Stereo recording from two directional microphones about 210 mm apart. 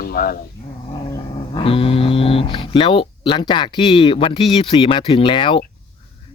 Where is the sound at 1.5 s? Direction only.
25° left (ahead or behind).